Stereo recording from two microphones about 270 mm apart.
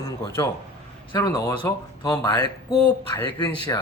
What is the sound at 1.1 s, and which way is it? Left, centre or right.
A man's voice, centre.